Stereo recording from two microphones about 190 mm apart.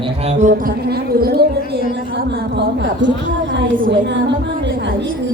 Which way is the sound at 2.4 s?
65° right (ahead or behind).